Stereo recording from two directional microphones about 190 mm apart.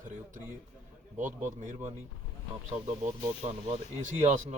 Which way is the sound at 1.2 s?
40° right (ahead or behind).